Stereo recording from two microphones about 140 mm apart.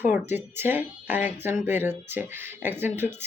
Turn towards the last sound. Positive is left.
turn(degrees=-15)  # may be behind; listen again after turning